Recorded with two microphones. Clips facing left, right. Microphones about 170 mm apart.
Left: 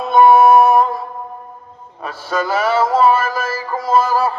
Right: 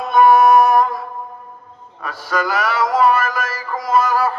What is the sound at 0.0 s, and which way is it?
Music, 25° left (ahead or behind).